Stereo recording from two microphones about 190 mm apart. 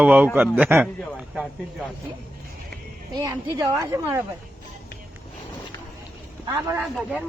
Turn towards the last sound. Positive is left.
turn(degrees=-15)  # may be behind; listen again after turning